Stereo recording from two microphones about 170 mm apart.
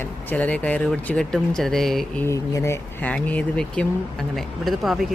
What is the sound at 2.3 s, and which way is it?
Speech, 15° left (ahead or behind).